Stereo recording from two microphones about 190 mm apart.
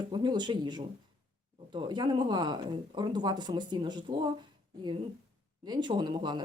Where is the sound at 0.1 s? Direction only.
25° right (ahead or behind).